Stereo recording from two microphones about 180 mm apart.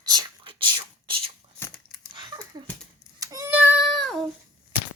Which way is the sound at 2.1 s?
25° right (ahead or behind).